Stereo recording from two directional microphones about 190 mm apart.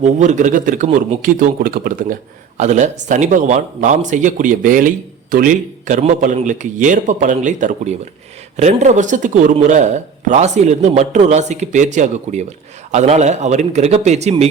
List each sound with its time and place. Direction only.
0.0 s speech: 40° right (ahead or behind)